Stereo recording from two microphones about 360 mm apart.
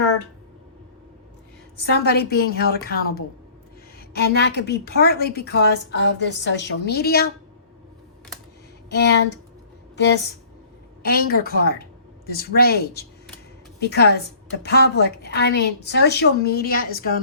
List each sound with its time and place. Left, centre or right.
1.8 s a woman's voice: left
8.9 s a woman's voice: left